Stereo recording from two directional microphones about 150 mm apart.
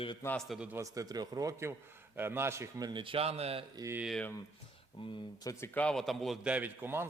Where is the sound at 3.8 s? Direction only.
20° right (ahead or behind).